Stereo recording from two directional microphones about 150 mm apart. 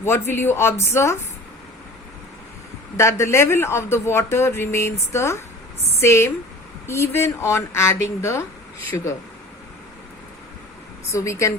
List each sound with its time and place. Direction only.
0.0 s speech: 15° left (ahead or behind)
3.0 s speech: 20° left (ahead or behind)
11.1 s speech: 20° left (ahead or behind)